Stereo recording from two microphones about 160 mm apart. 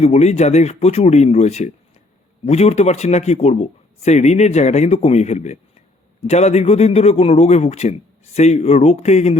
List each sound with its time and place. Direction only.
0.0 s a man's voice: 45° left (ahead or behind)